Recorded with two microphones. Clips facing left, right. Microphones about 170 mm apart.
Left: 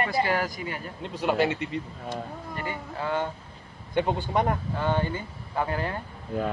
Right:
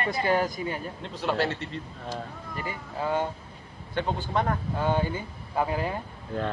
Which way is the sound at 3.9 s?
15° left (ahead or behind).